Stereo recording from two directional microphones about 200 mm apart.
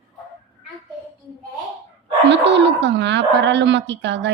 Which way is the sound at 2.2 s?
60° right (ahead or behind).